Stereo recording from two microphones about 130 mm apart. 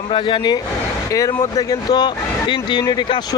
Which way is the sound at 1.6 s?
30° left (ahead or behind).